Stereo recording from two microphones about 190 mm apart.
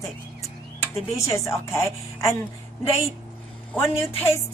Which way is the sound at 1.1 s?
15° left (ahead or behind).